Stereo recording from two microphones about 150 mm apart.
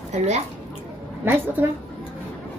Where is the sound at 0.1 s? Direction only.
45° right (ahead or behind).